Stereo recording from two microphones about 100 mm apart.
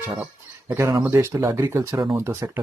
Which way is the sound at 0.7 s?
30° right (ahead or behind).